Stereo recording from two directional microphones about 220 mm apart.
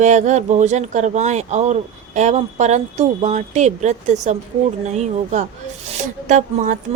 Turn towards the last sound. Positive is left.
turn(degrees=-35)  # may be behind; listen again after turning